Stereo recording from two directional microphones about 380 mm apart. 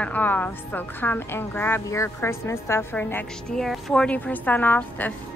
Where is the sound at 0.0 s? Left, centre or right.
Centre.